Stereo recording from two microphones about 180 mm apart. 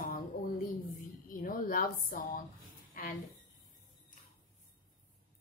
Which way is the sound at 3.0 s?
50° left (ahead or behind).